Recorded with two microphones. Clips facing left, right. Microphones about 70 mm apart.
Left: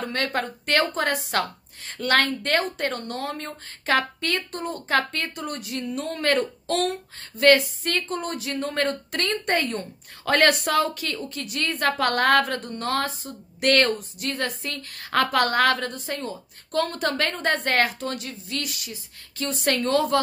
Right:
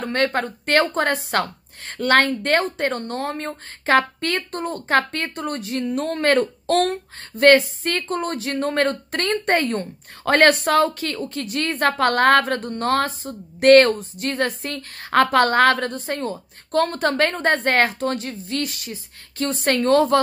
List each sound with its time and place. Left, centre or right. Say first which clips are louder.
0.0 s a woman's voice: right 5 dB; right